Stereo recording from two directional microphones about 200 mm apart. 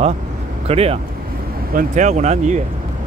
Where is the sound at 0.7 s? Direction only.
30° right (ahead or behind).